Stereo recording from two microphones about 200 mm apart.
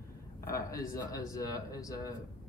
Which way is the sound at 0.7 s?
15° left (ahead or behind).